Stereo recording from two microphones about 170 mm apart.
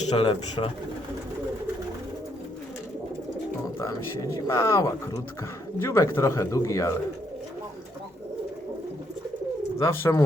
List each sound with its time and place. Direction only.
0.0 s speech: 40° left (ahead or behind)
0.3 s speech: 25° left (ahead or behind)
4.4 s speech: 15° left (ahead or behind)
9.8 s speech: 20° left (ahead or behind)